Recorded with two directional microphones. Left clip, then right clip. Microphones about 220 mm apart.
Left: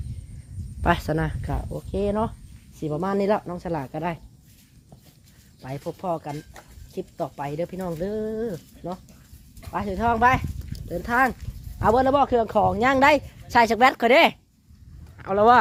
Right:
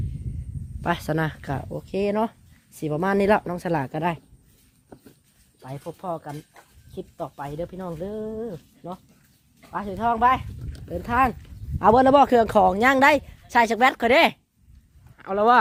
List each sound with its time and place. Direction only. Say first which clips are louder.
0.8 s speech: left 3 dB; centre (ahead or behind)
1.1 s speech: right 1 dB; 15° right (ahead or behind); by 4.2 s 50° right (ahead or behind)
5.6 s speech: left 3 dB; centre (ahead or behind)
10.7 s speech: left 1 dB; 25° right (ahead or behind)
11.8 s speech: right 4 dB; 45° right (ahead or behind); by 14.3 s 15° right (ahead or behind)
15.2 s speech: left 2 dB; 5° right (ahead or behind)